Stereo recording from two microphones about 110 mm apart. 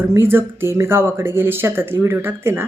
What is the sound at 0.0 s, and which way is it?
Speech, 20° right (ahead or behind).